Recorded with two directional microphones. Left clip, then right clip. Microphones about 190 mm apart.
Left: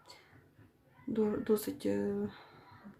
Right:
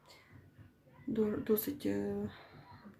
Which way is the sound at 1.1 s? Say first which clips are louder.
Left 2 dB; 5° left (ahead or behind).